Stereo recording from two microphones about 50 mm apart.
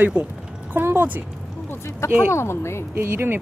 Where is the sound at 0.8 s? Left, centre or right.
Right.